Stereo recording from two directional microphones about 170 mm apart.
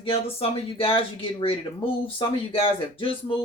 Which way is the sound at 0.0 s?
35° left (ahead or behind).